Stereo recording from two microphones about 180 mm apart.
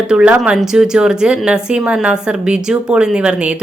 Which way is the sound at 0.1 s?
5° right (ahead or behind).